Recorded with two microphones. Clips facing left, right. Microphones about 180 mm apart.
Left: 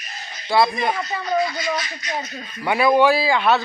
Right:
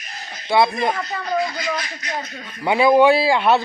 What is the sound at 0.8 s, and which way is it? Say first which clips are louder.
Speech: right 1 dB; centre (ahead or behind).